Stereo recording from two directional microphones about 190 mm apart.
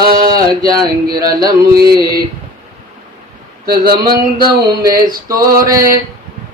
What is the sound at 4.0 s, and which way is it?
Mantra, 20° right (ahead or behind).